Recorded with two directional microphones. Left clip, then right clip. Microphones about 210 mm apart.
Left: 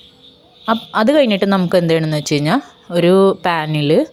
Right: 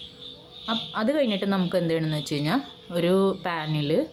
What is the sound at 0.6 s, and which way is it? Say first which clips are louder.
Speech: left 12 dB; 40° left (ahead or behind).